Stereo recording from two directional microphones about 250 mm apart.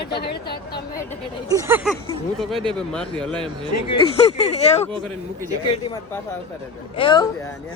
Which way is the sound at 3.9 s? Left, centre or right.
Left.